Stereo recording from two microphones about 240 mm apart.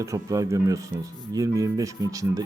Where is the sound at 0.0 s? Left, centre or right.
Centre.